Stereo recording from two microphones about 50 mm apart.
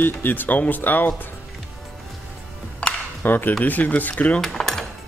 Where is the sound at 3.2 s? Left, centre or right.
Left.